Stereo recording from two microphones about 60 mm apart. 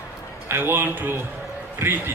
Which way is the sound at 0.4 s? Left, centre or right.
Right.